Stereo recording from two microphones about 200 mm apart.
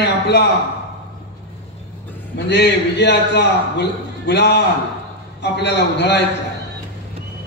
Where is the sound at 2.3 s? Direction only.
60° left (ahead or behind).